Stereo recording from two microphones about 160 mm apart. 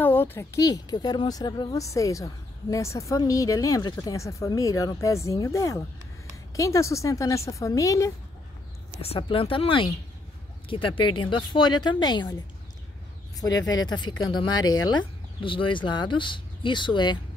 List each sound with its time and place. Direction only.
0.0 s speech: 15° left (ahead or behind)
9.0 s speech: 35° left (ahead or behind)
13.7 s speech: 25° left (ahead or behind)